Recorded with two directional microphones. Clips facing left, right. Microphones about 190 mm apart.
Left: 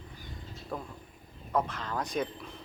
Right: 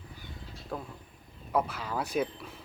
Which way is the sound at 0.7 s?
Centre (ahead or behind).